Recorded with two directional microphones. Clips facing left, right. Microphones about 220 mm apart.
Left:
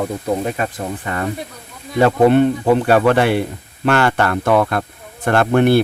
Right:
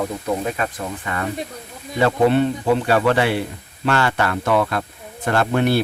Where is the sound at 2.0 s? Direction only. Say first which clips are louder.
Left 4 dB; 50° left (ahead or behind).